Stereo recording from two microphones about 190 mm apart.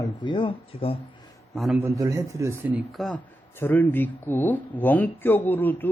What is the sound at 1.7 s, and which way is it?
Speech, 15° right (ahead or behind).